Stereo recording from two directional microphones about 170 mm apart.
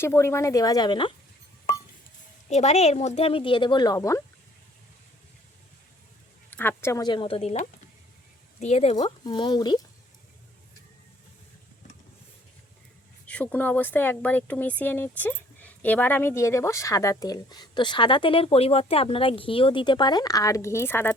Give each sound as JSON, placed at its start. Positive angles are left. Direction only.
{"t": 0.0, "sound": "speech", "side_deg": 15}
{"t": 2.5, "sound": "speech", "side_deg": 40}
{"t": 6.5, "sound": "speech", "side_deg": 10}
{"t": 9.0, "sound": "speech", "side_deg": 25}
{"t": 13.2, "sound": "speech", "side_deg": 10}